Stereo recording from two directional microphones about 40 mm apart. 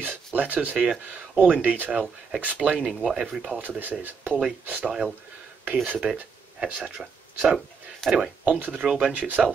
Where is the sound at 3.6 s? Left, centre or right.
Right.